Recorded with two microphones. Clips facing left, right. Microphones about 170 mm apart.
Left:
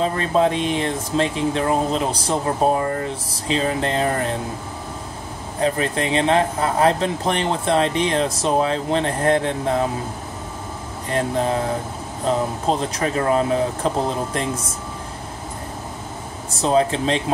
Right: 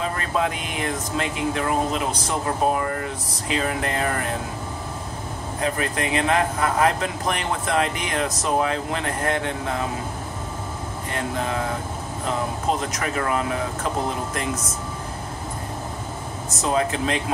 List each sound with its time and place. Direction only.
0.0 s speech: 30° left (ahead or behind)
5.6 s speech: 30° left (ahead or behind)
11.1 s speech: 35° left (ahead or behind)
16.4 s speech: 30° left (ahead or behind)